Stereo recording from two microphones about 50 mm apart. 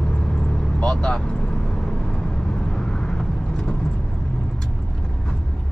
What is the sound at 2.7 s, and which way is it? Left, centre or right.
Vehicle, centre.